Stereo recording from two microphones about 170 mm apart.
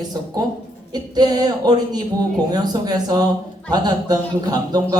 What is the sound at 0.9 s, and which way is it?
Speech, 25° right (ahead or behind).